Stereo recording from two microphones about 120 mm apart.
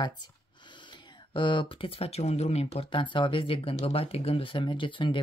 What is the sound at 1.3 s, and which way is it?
Speech, 45° left (ahead or behind).